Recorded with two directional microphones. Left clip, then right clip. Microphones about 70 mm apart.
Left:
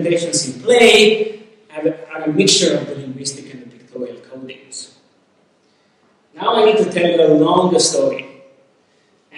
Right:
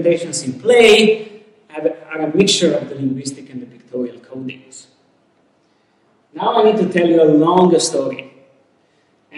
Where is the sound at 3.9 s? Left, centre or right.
Left.